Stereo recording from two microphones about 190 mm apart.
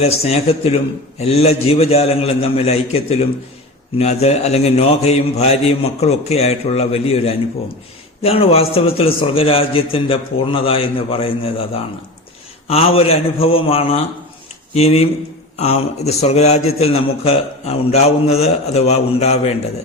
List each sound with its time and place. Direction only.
0.0 s a man's voice: 35° left (ahead or behind)